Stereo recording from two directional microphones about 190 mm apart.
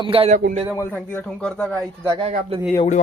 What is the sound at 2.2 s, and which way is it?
Speech, 35° right (ahead or behind).